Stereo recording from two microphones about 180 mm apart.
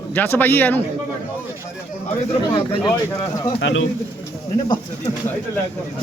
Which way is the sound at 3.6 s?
90° left.